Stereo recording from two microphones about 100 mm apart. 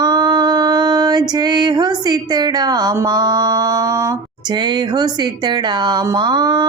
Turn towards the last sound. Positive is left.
turn(degrees=-45)  # may be behind; listen again after turning